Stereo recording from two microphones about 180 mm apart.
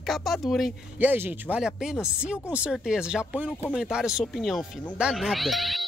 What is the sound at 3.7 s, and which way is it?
Speech, 5° right (ahead or behind).